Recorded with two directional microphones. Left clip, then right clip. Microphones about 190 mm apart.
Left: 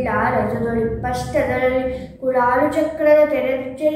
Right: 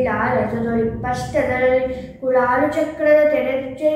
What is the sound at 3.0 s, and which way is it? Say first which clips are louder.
Speech: even; 5° left (ahead or behind).